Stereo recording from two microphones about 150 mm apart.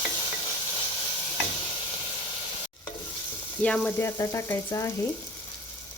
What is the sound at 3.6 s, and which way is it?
Frying, 10° left (ahead or behind).